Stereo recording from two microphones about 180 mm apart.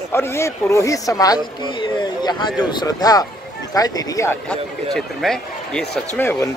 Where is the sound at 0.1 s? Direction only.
15° left (ahead or behind).